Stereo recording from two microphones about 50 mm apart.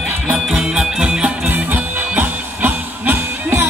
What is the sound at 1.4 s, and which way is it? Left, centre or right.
Music, right.